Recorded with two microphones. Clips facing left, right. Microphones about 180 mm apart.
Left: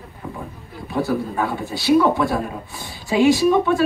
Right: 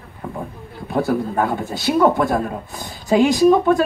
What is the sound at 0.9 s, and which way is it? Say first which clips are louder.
Speech: right 2 dB; 50° right (ahead or behind).